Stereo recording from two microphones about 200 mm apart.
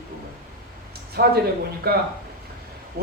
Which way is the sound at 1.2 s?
50° right (ahead or behind).